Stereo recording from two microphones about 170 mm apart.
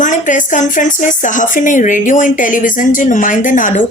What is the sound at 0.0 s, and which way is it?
Speech, 50° left (ahead or behind).